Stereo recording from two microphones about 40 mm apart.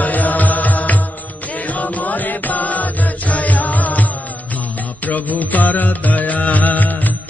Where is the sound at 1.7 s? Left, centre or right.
Left.